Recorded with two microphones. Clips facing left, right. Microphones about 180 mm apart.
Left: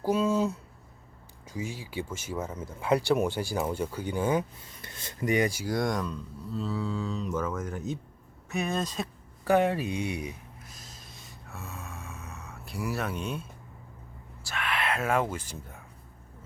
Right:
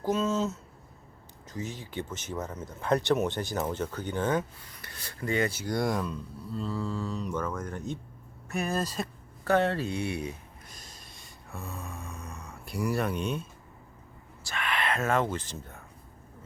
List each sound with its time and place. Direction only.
0.0 s a sound: 10° left (ahead or behind)
1.5 s speech: 10° left (ahead or behind)
4.6 s speech: 25° left (ahead or behind)
5.7 s speech: 5° right (ahead or behind)
9.4 s speech: 10° left (ahead or behind)
10.7 s a sound: centre (ahead or behind)
14.4 s speech: 5° left (ahead or behind)